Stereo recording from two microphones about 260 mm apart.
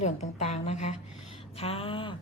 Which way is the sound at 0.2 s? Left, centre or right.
Left.